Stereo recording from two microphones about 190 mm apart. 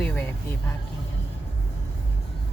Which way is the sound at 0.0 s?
5° left (ahead or behind).